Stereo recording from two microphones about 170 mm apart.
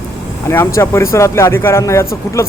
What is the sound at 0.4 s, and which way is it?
Speech, 15° left (ahead or behind).